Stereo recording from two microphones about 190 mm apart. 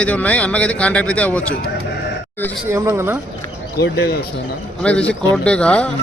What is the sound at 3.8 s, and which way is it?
Speech, 55° left (ahead or behind).